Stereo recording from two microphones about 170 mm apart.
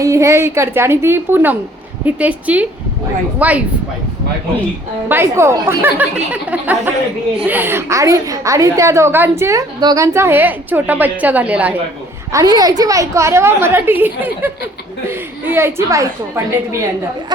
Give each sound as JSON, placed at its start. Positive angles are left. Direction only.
{"t": 0.0, "sound": "a woman's voice", "side_deg": -20}
{"t": 5.0, "sound": "a woman's voice", "side_deg": -15}
{"t": 12.3, "sound": "a woman's voice", "side_deg": -20}